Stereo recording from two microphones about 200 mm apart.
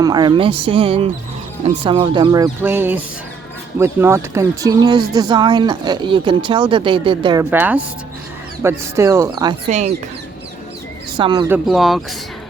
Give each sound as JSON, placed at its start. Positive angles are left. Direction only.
{"t": 0.0, "sound": "speech", "side_deg": -20}
{"t": 7.5, "sound": "speech", "side_deg": -10}
{"t": 9.6, "sound": "speech", "side_deg": -35}
{"t": 11.2, "sound": "speech", "side_deg": -20}
{"t": 11.5, "sound": "speech", "side_deg": 0}